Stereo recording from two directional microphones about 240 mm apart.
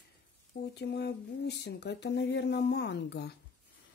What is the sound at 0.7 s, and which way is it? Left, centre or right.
Speech, left.